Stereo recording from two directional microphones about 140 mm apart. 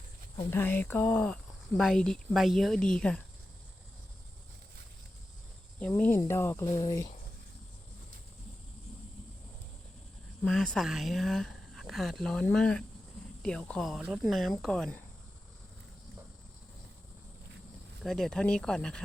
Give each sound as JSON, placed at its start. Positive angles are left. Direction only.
{"t": 0.5, "sound": "speech", "side_deg": 15}
{"t": 6.0, "sound": "speech", "side_deg": 15}
{"t": 10.4, "sound": "speech", "side_deg": 5}
{"t": 18.0, "sound": "speech", "side_deg": 0}